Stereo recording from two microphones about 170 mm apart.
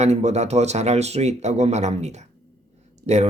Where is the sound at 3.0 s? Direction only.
60° right (ahead or behind).